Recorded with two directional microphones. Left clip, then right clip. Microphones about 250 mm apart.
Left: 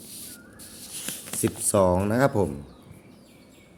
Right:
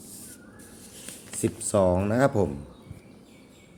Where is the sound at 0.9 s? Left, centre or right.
Left.